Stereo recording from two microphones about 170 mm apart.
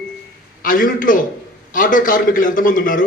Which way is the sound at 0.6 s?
55° left (ahead or behind).